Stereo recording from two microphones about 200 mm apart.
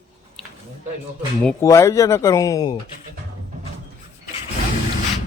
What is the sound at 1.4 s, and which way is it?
Speech, 10° left (ahead or behind).